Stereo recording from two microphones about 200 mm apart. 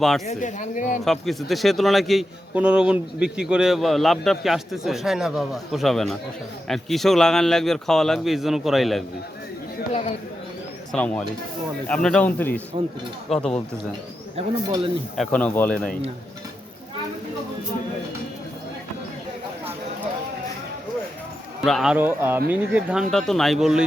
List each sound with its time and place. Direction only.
0.3 s speech: 40° left (ahead or behind)
1.0 s a man's voice: centre (ahead or behind)
9.9 s speech: 35° left (ahead or behind)
10.9 s a man's voice: 5° left (ahead or behind)
14.7 s speech: 25° right (ahead or behind)
15.1 s a man's voice: 5° left (ahead or behind)
21.6 s a man's voice: centre (ahead or behind)